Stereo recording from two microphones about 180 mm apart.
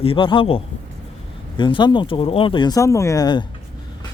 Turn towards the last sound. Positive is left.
turn(degrees=20)  # may be behind; listen again after turning